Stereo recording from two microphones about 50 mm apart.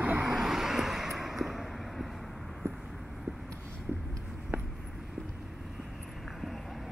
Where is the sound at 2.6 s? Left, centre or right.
Right.